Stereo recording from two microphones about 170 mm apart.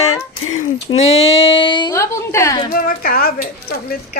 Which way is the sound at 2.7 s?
55° left (ahead or behind).